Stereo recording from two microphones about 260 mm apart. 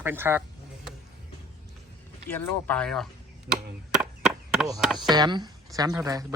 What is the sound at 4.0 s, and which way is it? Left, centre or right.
Wood, centre.